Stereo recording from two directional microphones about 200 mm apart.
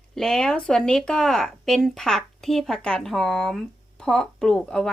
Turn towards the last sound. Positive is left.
turn(degrees=5)  # may be behind; listen again after turning